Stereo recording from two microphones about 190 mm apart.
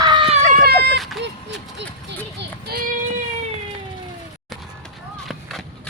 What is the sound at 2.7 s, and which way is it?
Child singing, 55° right (ahead or behind).